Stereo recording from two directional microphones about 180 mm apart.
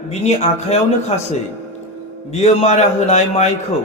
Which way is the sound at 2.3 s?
35° left (ahead or behind).